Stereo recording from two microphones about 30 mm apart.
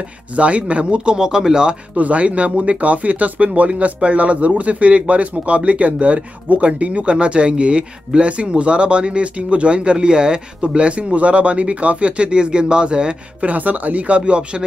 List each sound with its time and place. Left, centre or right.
0.4 s a man's voice: right
1.1 s speech: centre
2.0 s a man's voice: right
9.9 s speech: right
10.6 s speech: right
13.5 s speech: right
14.0 s speech: right